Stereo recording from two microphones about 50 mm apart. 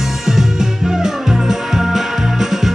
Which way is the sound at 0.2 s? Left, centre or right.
Centre.